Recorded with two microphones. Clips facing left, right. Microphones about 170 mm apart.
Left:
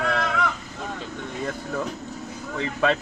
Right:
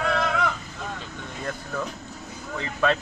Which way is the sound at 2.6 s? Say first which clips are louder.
Left 1 dB; 20° left (ahead or behind).